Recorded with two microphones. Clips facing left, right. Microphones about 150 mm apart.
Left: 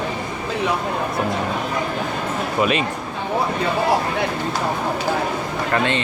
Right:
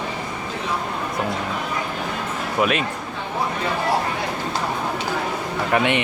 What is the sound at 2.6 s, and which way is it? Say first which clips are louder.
Speech: left 1 dB; centre (ahead or behind).